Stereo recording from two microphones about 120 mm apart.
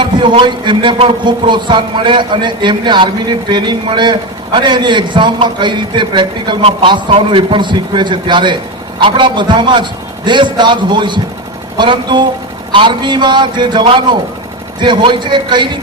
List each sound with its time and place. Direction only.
0.0 s speech: 40° right (ahead or behind)